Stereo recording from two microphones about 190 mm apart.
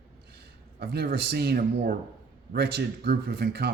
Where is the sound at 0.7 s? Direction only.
55° right (ahead or behind).